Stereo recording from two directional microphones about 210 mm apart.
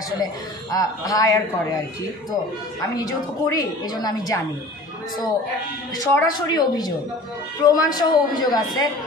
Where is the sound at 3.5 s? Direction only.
15° left (ahead or behind).